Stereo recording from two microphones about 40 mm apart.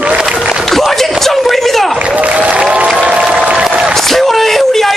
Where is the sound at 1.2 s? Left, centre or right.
Centre.